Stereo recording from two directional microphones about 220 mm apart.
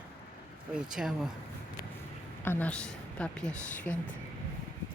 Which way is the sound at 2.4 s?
10° left (ahead or behind).